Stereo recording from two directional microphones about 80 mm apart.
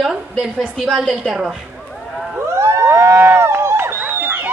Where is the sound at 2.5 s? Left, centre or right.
Right.